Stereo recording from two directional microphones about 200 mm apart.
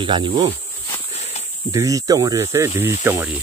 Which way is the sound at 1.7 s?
15° right (ahead or behind).